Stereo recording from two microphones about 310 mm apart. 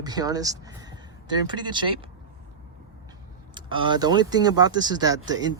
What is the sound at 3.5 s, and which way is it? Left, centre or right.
Speech, centre.